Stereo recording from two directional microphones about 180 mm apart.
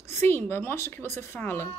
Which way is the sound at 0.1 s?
15° left (ahead or behind).